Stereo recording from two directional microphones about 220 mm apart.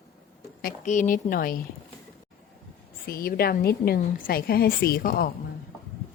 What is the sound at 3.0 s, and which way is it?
A woman's voice, 40° left (ahead or behind).